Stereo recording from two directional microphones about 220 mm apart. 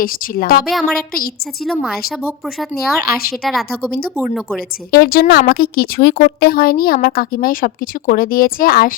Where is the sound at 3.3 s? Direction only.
Centre (ahead or behind).